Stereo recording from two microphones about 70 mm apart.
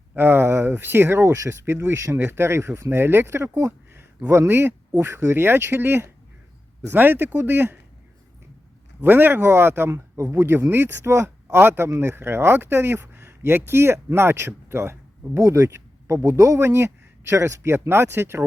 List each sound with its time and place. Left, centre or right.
0.2 s speech: right
9.0 s speech: right
15.4 s speech: right